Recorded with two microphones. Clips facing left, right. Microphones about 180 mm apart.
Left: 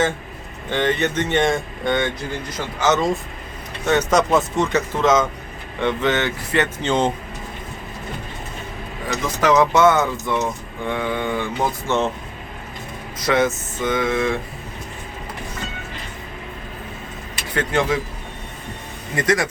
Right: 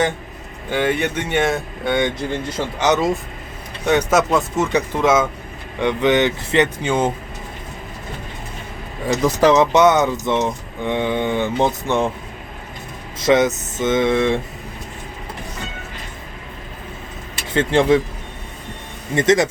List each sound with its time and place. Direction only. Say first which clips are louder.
0.7 s speech: right 1 dB; 10° right (ahead or behind)
4.7 s speech: right 1 dB; 10° right (ahead or behind)
9.0 s speech: right 5 dB; 30° right (ahead or behind)
9.6 s speech: right 2 dB; 20° right (ahead or behind)
13.1 s speech: right 4 dB; 20° right (ahead or behind)
17.5 s speech: right 6 dB; 25° right (ahead or behind)
19.1 s speech: right 5 dB; 25° right (ahead or behind)